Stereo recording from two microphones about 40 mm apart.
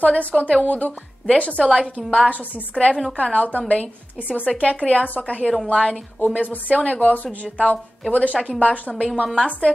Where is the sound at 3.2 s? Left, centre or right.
Left.